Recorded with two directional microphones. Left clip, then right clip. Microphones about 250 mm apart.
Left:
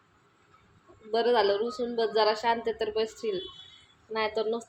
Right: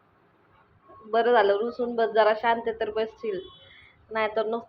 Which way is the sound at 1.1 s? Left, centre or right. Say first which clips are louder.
Right 4 dB; centre.